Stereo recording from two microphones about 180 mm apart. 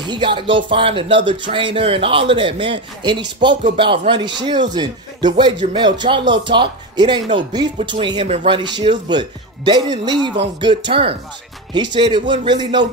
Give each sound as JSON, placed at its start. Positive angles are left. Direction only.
{"t": 0.0, "sound": "speech", "side_deg": -25}